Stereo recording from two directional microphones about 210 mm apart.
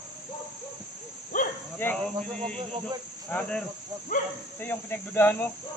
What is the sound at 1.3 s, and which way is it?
Hoot, 40° left (ahead or behind).